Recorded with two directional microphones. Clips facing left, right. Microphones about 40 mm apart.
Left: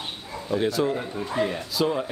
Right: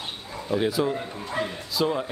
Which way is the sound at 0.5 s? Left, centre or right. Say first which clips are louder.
Even; centre.